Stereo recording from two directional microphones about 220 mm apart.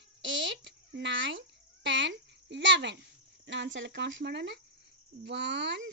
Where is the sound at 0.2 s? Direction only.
55° right (ahead or behind).